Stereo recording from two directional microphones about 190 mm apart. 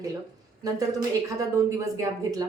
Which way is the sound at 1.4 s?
15° right (ahead or behind).